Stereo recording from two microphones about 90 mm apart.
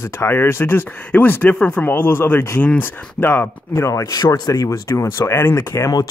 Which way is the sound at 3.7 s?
35° left (ahead or behind).